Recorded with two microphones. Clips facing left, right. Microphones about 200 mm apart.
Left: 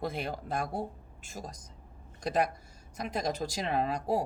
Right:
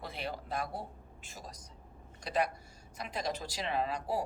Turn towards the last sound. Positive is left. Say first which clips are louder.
# left 4 dB
turn(degrees=45)  # may be behind; listen again after turning